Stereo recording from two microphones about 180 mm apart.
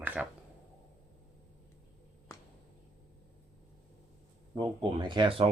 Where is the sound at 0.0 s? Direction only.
10° right (ahead or behind).